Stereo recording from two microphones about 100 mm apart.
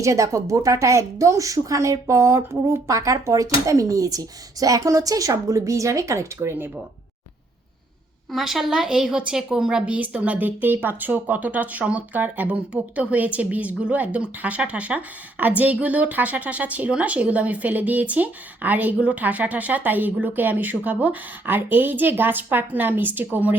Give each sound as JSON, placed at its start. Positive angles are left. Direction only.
{"t": 0.0, "sound": "a woman's voice", "side_deg": -30}
{"t": 8.3, "sound": "a woman's voice", "side_deg": -5}